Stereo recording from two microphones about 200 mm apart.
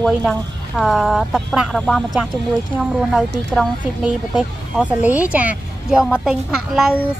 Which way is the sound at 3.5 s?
Centre (ahead or behind).